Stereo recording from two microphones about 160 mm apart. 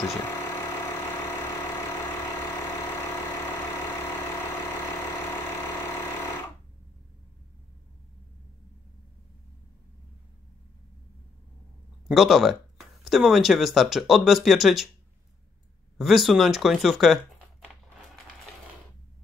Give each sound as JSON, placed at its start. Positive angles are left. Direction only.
{"t": 0.2, "sound": "vehicle", "side_deg": 15}
{"t": 4.3, "sound": "vehicle", "side_deg": 15}
{"t": 12.1, "sound": "speech", "side_deg": 0}
{"t": 16.0, "sound": "speech", "side_deg": 0}